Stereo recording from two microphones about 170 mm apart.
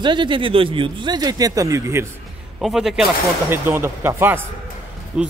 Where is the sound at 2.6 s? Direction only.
Centre (ahead or behind).